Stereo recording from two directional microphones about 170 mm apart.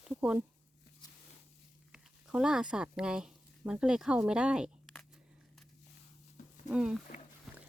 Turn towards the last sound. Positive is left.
turn(degrees=-5)  # may be behind; listen again after turning